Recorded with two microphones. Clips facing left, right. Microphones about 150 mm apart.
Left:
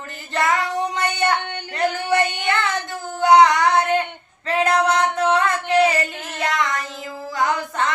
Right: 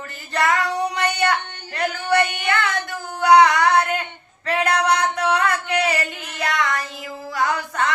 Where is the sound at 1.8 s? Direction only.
20° left (ahead or behind).